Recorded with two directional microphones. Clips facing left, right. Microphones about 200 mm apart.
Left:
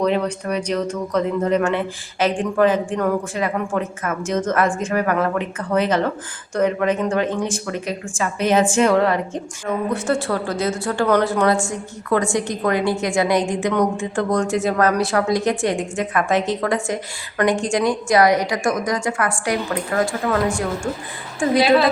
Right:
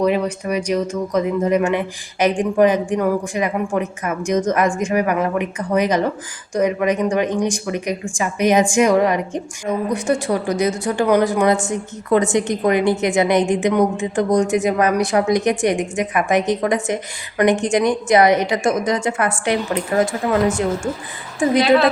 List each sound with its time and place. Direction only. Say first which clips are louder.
0.0 s a woman's voice: right 2 dB; 10° right (ahead or behind)